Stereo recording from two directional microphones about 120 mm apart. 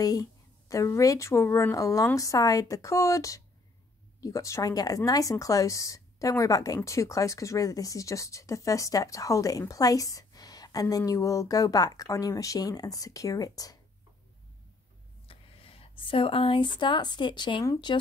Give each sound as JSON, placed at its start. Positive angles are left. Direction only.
{"t": 0.0, "sound": "speech", "side_deg": 30}
{"t": 15.2, "sound": "speech", "side_deg": 50}